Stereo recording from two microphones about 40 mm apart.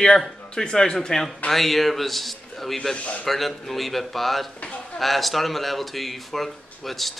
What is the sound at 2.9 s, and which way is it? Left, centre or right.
Speech, left.